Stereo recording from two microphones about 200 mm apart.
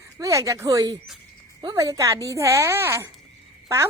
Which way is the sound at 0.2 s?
15° right (ahead or behind).